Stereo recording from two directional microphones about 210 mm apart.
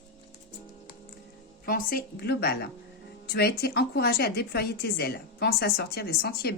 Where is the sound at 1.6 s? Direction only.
45° left (ahead or behind).